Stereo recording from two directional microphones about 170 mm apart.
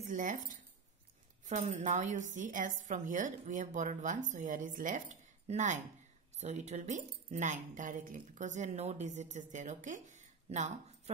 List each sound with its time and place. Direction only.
0.0 s speech: 50° right (ahead or behind)